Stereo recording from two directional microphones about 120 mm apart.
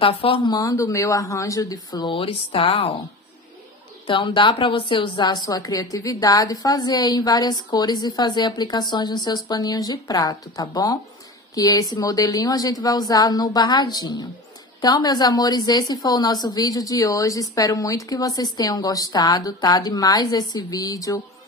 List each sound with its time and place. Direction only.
0.0 s speech: 50° left (ahead or behind)
0.5 s speech: 30° left (ahead or behind)
2.1 s speech: 50° left (ahead or behind)
4.1 s a woman's voice: 45° left (ahead or behind); by 21.2 s 30° left (ahead or behind)